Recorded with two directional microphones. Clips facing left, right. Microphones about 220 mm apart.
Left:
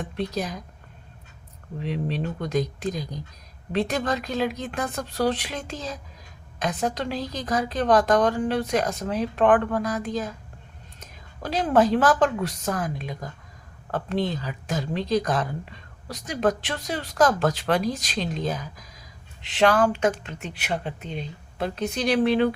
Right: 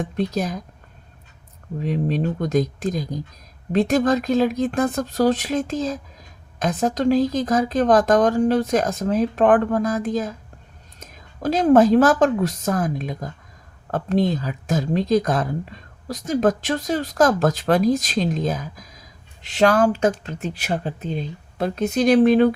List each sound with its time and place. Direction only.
0.0 s speech: 45° right (ahead or behind)
1.8 s speech: 45° right (ahead or behind)